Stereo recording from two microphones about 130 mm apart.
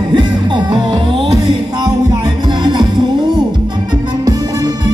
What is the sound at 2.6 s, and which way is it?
Music, 35° right (ahead or behind).